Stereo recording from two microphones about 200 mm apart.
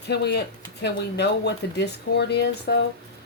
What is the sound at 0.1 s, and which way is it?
Speech, 55° left (ahead or behind).